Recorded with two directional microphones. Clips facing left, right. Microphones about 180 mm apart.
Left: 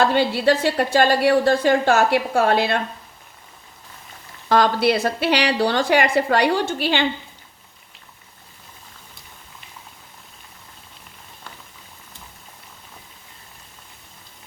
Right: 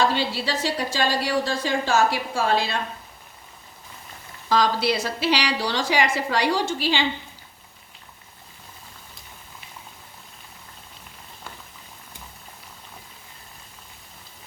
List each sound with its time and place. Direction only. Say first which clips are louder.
0.0 s a woman's voice: left 6 dB; 55° left (ahead or behind)
4.4 s a woman's voice: left 4 dB; 60° left (ahead or behind)